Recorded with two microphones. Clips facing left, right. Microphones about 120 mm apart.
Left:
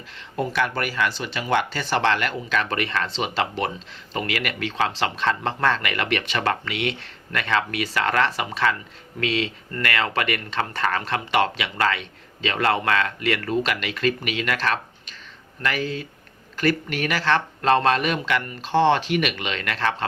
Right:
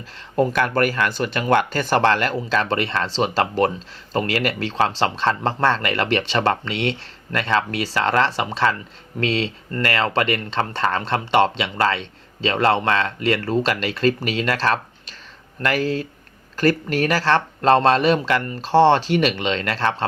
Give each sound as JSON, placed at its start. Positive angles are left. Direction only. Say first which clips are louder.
{"t": 0.3, "sound": "speech", "louder": "right 6 dB", "side_deg": -45}